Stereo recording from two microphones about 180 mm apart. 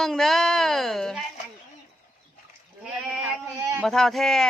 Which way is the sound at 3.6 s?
15° right (ahead or behind).